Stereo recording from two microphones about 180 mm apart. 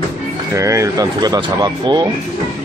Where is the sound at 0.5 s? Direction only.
15° right (ahead or behind).